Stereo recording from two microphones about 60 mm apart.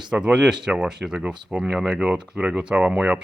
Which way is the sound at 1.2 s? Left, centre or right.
Right.